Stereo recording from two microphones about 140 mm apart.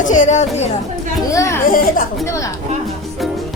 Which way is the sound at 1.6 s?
90° left.